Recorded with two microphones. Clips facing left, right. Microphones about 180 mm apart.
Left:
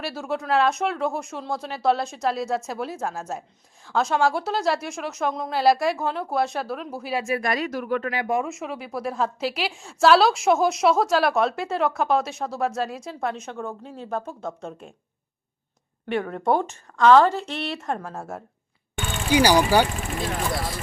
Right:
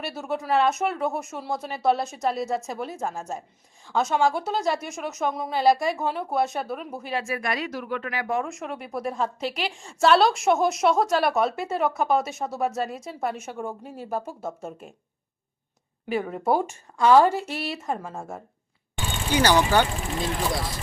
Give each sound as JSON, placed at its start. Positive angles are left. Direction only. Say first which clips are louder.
{"t": 0.0, "sound": "a woman's voice", "louder": "left 1 dB", "side_deg": 0}
{"t": 7.3, "sound": "speech", "louder": "left 3 dB", "side_deg": 40}
{"t": 8.3, "sound": "a woman's voice", "louder": "left 1 dB", "side_deg": 5}
{"t": 16.0, "sound": "a woman's voice", "louder": "left 1 dB", "side_deg": -5}
{"t": 19.3, "sound": "speech", "louder": "left 2 dB", "side_deg": 10}